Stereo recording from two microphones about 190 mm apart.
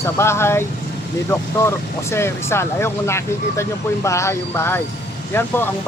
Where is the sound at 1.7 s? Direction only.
15° left (ahead or behind).